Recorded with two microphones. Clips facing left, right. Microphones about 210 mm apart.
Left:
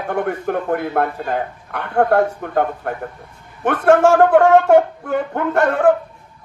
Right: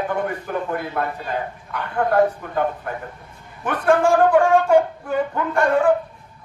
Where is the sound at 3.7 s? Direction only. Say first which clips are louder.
Left 4 dB; 70° left (ahead or behind).